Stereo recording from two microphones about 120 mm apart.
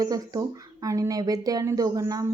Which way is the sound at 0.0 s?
30° right (ahead or behind).